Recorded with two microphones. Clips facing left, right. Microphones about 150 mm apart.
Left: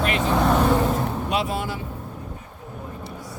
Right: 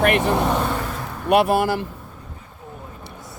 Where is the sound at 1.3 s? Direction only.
65° right (ahead or behind).